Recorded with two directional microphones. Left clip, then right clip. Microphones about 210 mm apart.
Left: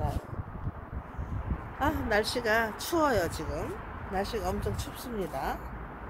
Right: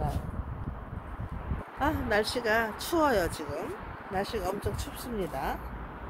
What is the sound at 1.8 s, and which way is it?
Speech, centre (ahead or behind).